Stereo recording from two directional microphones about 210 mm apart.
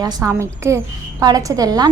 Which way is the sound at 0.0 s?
15° right (ahead or behind).